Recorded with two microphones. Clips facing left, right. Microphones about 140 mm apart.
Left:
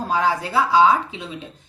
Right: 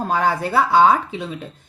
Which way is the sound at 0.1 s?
55° right (ahead or behind).